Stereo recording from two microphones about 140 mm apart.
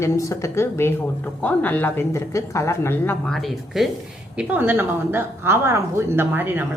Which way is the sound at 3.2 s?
Centre (ahead or behind).